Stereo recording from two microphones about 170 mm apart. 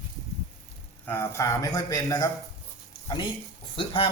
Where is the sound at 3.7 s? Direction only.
30° left (ahead or behind).